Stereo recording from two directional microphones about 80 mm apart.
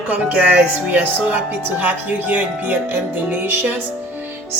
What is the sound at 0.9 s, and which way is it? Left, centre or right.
Speech, right.